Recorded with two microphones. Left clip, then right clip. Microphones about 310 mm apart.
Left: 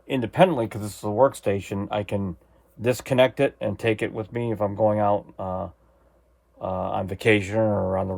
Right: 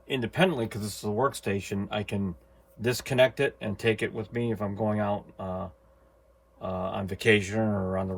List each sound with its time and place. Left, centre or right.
0.1 s speech: left